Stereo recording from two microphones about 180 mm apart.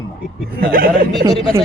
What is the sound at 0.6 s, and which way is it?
Speech, 55° right (ahead or behind).